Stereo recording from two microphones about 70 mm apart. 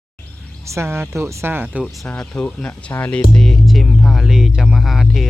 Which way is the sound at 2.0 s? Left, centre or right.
Centre.